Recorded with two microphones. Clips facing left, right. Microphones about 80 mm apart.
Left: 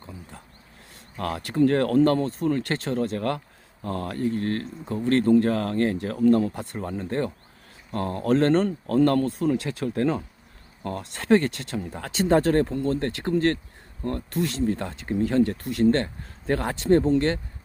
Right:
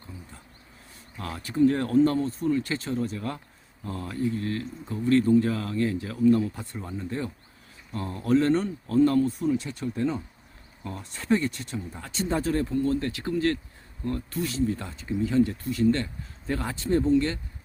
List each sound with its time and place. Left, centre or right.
0.9 s speech: left
14.3 s speech: left
17.0 s speech: left